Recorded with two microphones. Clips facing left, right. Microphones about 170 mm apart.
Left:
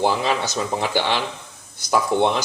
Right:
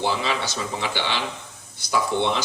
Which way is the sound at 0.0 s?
45° left (ahead or behind).